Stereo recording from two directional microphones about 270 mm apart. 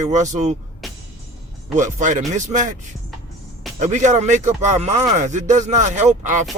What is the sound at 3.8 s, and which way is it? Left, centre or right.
Speech, right.